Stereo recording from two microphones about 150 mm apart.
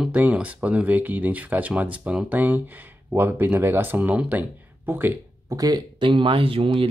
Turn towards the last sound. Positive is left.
turn(degrees=-35)  # may be behind; listen again after turning